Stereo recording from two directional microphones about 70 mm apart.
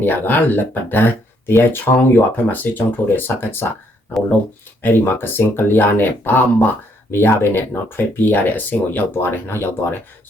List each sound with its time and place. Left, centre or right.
0.0 s speech: left
4.8 s speech: left